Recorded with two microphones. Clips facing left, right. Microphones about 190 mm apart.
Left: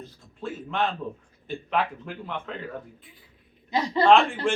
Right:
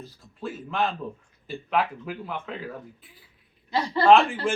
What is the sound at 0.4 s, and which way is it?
A man's voice, centre (ahead or behind).